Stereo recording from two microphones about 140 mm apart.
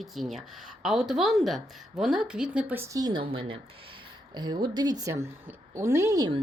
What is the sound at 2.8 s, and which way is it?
A woman's voice, 25° right (ahead or behind).